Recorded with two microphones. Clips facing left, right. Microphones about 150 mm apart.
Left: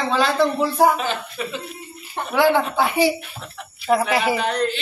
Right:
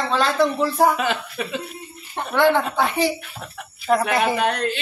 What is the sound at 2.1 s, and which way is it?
A woman's voice, 5° left (ahead or behind).